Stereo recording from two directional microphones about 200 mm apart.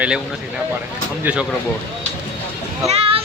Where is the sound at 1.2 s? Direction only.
5° right (ahead or behind).